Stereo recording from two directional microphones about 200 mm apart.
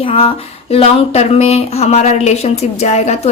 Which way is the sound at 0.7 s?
30° left (ahead or behind).